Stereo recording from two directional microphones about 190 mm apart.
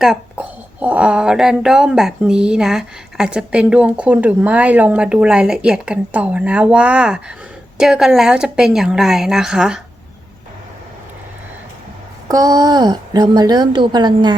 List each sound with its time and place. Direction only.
0.0 s a child's voice: 5° right (ahead or behind)
12.3 s a woman's voice: 20° right (ahead or behind)